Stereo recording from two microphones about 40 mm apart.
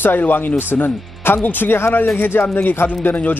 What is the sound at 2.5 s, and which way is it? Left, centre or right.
Speech, left.